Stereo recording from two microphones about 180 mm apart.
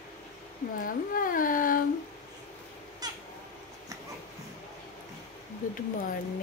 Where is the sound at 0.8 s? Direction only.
50° left (ahead or behind).